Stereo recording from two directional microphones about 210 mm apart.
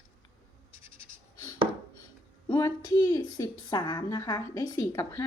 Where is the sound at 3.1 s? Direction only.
20° left (ahead or behind).